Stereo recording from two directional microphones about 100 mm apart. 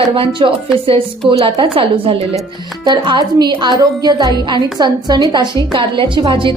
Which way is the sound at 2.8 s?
50° right (ahead or behind).